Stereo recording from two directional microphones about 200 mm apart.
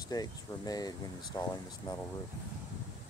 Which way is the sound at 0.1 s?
20° left (ahead or behind).